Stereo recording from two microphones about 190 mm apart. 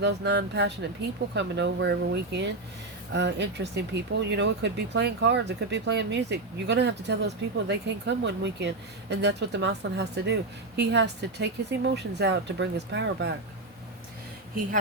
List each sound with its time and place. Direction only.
0.0 s speech: 65° right (ahead or behind)